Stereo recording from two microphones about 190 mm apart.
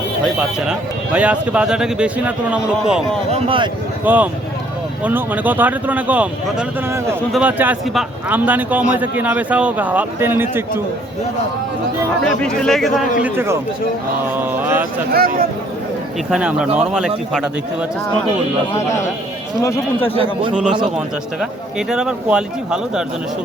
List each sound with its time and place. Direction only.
0.3 s speech: 5° right (ahead or behind)
3.3 s speech: 30° right (ahead or behind)
4.0 s a man's voice: 10° right (ahead or behind)
12.2 s speech: 5° left (ahead or behind)
13.2 s a man's voice: 10° right (ahead or behind)
15.1 s speech: 50° right (ahead or behind)
16.3 s speech: 5° right (ahead or behind)
18.7 s a man's voice: 15° left (ahead or behind)
20.5 s speech: 5° right (ahead or behind)
21.8 s speech: 5° right (ahead or behind)